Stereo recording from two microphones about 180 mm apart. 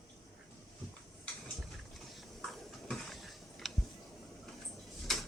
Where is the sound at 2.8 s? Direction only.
Centre (ahead or behind).